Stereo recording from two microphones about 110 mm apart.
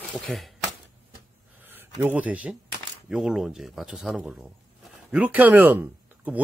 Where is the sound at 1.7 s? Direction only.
20° right (ahead or behind).